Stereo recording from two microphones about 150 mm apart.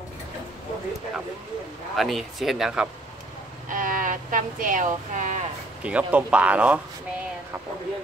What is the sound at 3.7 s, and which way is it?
Speech, 65° right (ahead or behind).